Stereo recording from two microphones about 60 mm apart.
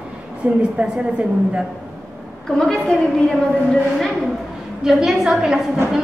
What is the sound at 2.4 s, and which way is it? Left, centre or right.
Speech, centre.